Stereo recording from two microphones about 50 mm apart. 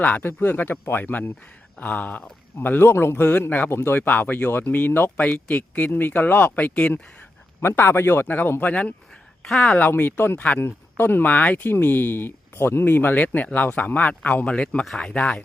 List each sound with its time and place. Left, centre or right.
0.2 s speech: left
2.9 s speech: left
3.9 s speech: left
5.1 s speech: left
5.9 s speech: left
7.6 s speech: left
8.6 s speech: left
9.4 s speech: centre
9.9 s speech: left
10.3 s speech: left
10.6 s speech: left
13.1 s speech: left